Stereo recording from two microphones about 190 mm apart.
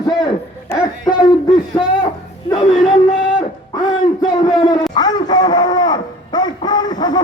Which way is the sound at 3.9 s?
25° left (ahead or behind).